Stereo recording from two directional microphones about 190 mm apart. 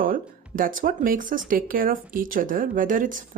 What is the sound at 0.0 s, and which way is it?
Speech, 45° right (ahead or behind).